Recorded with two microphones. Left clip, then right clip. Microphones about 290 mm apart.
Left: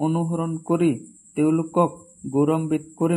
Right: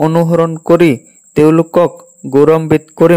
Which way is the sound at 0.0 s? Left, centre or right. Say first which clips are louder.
Right 15 dB; right.